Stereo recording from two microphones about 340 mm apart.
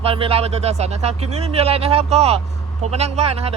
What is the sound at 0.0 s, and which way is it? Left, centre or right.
Speech, centre.